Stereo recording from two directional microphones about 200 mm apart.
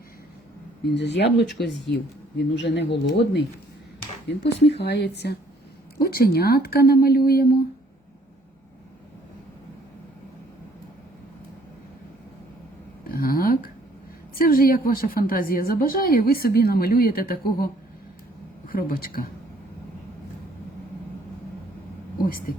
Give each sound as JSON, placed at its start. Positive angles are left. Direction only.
{"t": 0.9, "sound": "a woman's voice", "side_deg": 60}
{"t": 13.1, "sound": "a sound", "side_deg": 45}
{"t": 14.3, "sound": "a woman's voice", "side_deg": 45}
{"t": 18.7, "sound": "a woman's voice", "side_deg": 45}
{"t": 22.5, "sound": "speech", "side_deg": 50}